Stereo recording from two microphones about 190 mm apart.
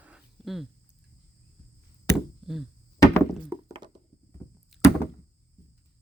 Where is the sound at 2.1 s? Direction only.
Centre (ahead or behind).